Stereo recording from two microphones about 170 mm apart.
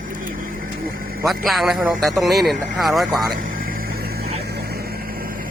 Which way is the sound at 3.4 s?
55° right (ahead or behind).